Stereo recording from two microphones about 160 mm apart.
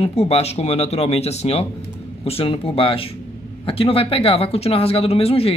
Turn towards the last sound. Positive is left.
turn(degrees=40)  # may be behind; listen again after turning